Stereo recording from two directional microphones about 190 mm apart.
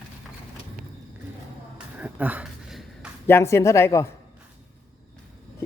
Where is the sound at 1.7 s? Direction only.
5° right (ahead or behind).